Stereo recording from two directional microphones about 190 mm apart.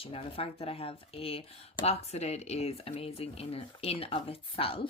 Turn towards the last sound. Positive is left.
turn(degrees=30)  # may be behind; listen again after turning